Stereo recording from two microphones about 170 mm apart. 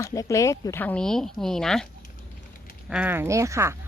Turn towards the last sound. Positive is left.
turn(degrees=-15)  # may be behind; listen again after turning